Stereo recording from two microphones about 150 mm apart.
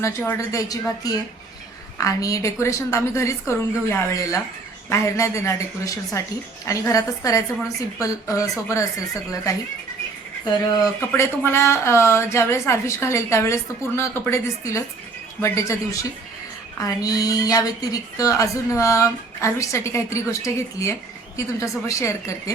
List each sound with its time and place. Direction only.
0.0 s a woman's voice: 15° left (ahead or behind)
11.1 s a woman's voice: 15° left (ahead or behind)